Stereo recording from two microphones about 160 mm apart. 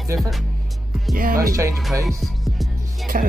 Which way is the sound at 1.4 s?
20° right (ahead or behind).